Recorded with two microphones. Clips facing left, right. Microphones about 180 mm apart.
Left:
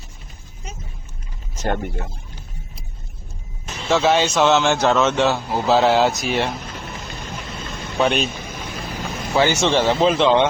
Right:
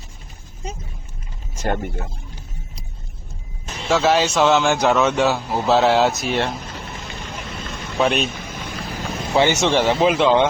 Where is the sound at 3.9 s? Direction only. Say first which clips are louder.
Even; 5° right (ahead or behind).